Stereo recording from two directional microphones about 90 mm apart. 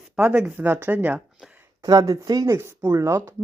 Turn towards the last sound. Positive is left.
turn(degrees=-30)  # may be behind; listen again after turning